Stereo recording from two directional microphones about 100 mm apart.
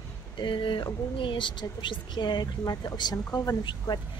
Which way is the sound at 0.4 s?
55° left (ahead or behind).